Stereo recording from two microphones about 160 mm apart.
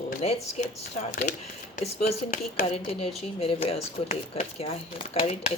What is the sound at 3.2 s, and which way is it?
Speech, 40° left (ahead or behind).